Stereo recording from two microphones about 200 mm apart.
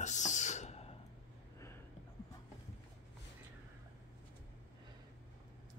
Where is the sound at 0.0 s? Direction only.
35° left (ahead or behind).